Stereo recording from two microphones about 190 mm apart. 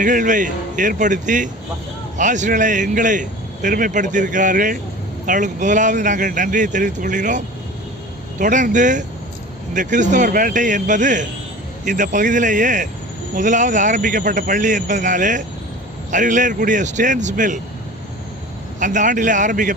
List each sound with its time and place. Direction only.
0.0 s speech: 45° right (ahead or behind)
18.8 s speech: 40° right (ahead or behind)